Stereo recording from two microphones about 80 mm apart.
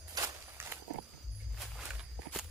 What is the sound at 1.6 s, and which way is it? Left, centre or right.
Walk, centre.